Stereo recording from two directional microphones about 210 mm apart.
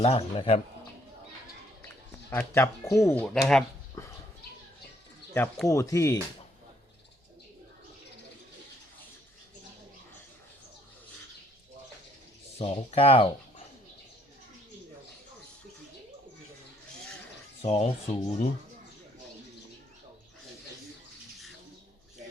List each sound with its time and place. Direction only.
0.0 s speech: 30° left (ahead or behind)
2.3 s speech: 10° left (ahead or behind)
5.3 s speech: 10° left (ahead or behind)
12.5 s speech: 30° left (ahead or behind)
17.6 s speech: 30° left (ahead or behind)